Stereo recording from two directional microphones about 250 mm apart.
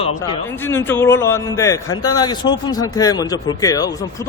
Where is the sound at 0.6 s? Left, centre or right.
Centre.